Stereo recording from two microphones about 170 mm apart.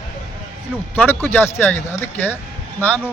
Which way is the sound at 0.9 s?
10° left (ahead or behind).